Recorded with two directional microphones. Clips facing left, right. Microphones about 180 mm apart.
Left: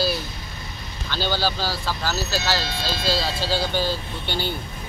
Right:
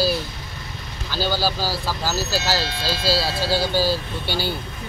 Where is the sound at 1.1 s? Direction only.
10° right (ahead or behind).